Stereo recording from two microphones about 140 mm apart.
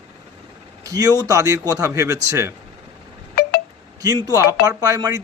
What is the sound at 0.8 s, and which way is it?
A man's voice, 25° right (ahead or behind).